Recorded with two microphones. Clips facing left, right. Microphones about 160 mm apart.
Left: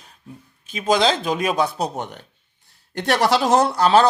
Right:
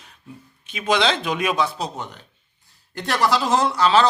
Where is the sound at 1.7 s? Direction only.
55° left (ahead or behind).